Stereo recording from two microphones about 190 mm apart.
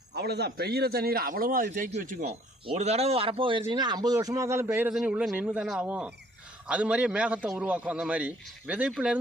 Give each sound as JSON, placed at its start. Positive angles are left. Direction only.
{"t": 0.1, "sound": "a man's voice", "side_deg": -60}